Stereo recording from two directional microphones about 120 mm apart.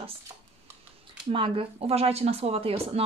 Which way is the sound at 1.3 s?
45° right (ahead or behind).